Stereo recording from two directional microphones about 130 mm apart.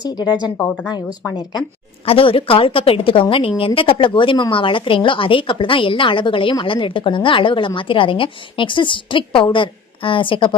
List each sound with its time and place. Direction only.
0.0 s speech: 35° left (ahead or behind)
0.5 s speech: 15° left (ahead or behind)
2.0 s a woman's voice: 45° left (ahead or behind)